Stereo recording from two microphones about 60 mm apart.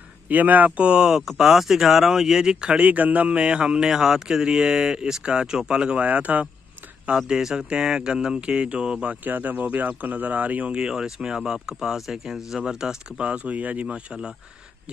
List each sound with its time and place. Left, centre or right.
0.3 s speech: right
6.0 s speech: right
7.2 s speech: centre
9.2 s speech: right; by 12.9 s centre
13.2 s speech: right